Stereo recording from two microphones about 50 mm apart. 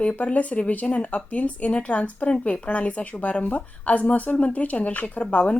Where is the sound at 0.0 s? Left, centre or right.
Left.